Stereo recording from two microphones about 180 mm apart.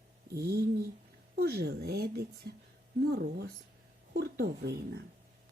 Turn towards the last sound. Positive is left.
turn(degrees=-65)  # may be behind; listen again after turning